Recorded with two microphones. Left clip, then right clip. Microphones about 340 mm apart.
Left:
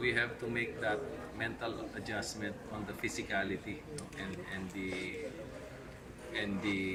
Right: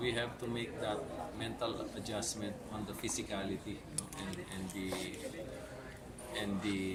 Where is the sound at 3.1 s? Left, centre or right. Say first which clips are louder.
Left 6 dB; centre.